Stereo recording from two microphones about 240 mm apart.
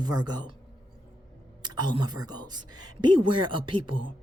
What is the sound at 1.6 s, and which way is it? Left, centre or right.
A woman's voice, centre.